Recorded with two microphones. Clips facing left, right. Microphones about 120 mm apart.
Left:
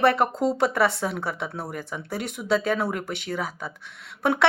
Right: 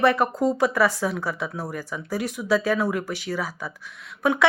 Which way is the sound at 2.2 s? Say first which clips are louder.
Right 4 dB; 60° left (ahead or behind).